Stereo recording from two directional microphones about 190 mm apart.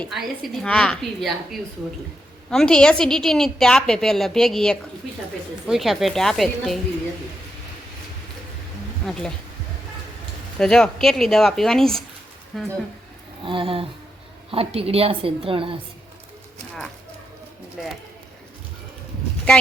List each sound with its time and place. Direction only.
0.0 s a woman's voice: centre (ahead or behind)
9.0 s a woman's voice: 5° left (ahead or behind)
10.6 s a woman's voice: 5° left (ahead or behind)
13.4 s a woman's voice: 25° right (ahead or behind)